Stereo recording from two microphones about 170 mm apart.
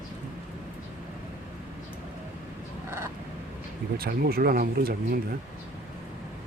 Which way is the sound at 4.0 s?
65° right (ahead or behind).